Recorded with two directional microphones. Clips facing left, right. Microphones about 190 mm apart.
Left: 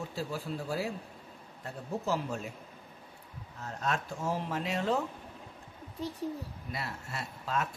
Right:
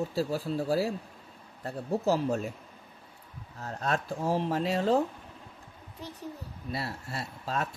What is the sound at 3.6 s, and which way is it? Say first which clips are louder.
Speech: right 3 dB; 35° right (ahead or behind).